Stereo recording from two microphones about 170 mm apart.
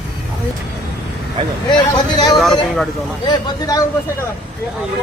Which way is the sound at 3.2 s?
25° left (ahead or behind).